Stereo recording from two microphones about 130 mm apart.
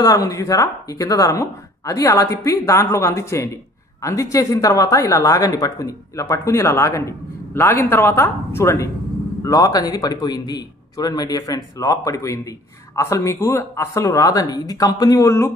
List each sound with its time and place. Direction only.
0.0 s a man's voice: 30° left (ahead or behind)